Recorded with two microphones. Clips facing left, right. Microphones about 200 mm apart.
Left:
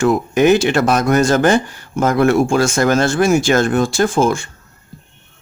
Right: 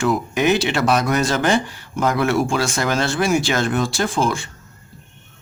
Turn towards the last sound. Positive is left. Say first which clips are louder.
# left 6 dB
turn(degrees=45)  # may be behind; listen again after turning